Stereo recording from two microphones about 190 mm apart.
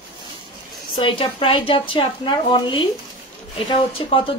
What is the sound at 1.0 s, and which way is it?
A woman's voice, 25° left (ahead or behind).